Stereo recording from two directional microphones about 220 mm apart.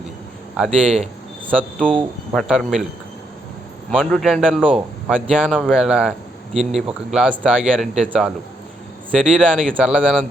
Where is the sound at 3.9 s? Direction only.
Centre (ahead or behind).